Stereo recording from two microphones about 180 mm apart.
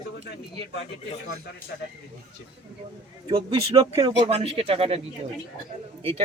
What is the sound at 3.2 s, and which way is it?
Speech, 25° right (ahead or behind).